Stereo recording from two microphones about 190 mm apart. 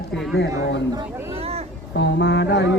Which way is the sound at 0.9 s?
30° right (ahead or behind).